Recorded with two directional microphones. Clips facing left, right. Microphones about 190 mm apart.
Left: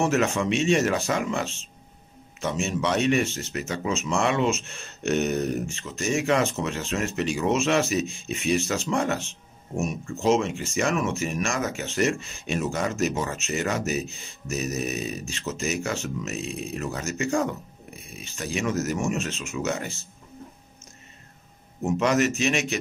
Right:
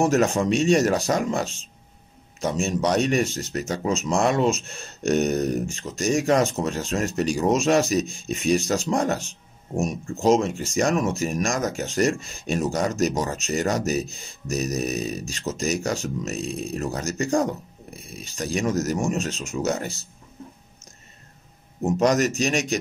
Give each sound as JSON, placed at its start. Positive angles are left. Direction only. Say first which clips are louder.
{"t": 0.0, "sound": "speech", "louder": "right 3 dB", "side_deg": -40}
{"t": 21.9, "sound": "speech", "louder": "right 2 dB", "side_deg": -40}